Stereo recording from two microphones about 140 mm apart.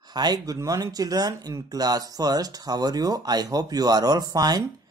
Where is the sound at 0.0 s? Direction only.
30° right (ahead or behind).